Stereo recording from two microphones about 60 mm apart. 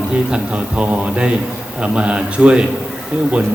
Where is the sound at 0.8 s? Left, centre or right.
Centre.